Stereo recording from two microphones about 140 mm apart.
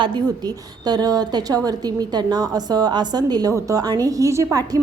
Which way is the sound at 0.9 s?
30° right (ahead or behind).